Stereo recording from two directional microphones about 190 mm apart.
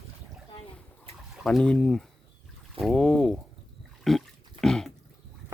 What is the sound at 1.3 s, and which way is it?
Speech, centre (ahead or behind).